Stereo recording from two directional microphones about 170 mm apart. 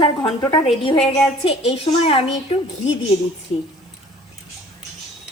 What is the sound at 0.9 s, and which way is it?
A woman's voice, 40° left (ahead or behind).